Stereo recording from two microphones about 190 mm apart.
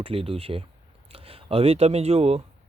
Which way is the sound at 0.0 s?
30° right (ahead or behind).